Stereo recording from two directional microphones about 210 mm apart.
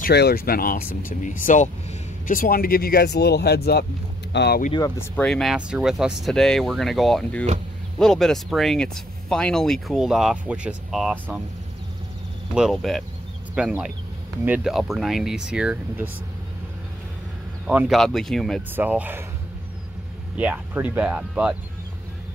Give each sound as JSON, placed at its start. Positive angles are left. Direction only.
{"t": 0.0, "sound": "speech", "side_deg": 50}
{"t": 4.7, "sound": "speech", "side_deg": 15}
{"t": 5.1, "sound": "speech", "side_deg": 5}
{"t": 12.5, "sound": "speech", "side_deg": 0}
{"t": 17.6, "sound": "speech", "side_deg": -5}
{"t": 20.3, "sound": "speech", "side_deg": -5}